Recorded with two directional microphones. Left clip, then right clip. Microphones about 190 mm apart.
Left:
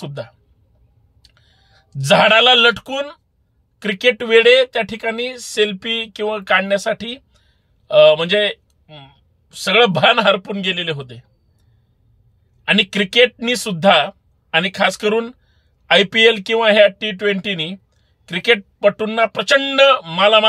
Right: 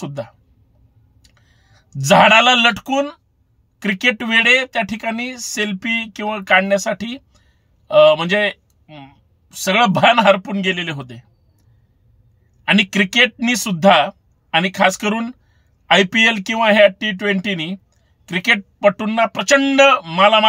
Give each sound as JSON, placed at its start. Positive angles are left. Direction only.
{"t": 1.3, "sound": "speech", "side_deg": 5}
{"t": 12.6, "sound": "speech", "side_deg": 5}
{"t": 16.6, "sound": "speech", "side_deg": 10}